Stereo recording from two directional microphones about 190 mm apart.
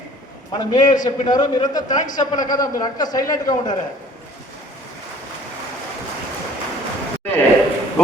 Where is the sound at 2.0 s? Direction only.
40° left (ahead or behind).